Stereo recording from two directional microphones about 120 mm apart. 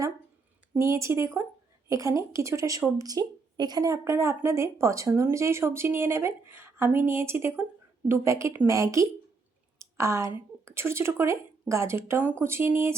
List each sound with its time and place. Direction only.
0.8 s a woman's voice: 25° right (ahead or behind)
9.7 s a sound: 25° right (ahead or behind)
10.7 s a woman's voice: 20° right (ahead or behind)